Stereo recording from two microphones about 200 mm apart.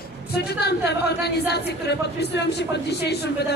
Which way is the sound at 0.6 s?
55° left (ahead or behind).